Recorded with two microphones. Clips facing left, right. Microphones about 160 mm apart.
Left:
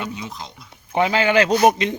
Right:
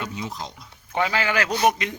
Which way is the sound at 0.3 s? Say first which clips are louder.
Right 1 dB; 40° right (ahead or behind).